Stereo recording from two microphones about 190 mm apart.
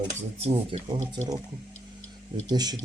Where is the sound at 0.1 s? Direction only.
35° right (ahead or behind).